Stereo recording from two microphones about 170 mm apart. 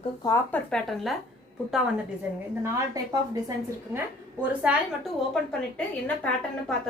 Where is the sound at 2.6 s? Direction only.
20° right (ahead or behind).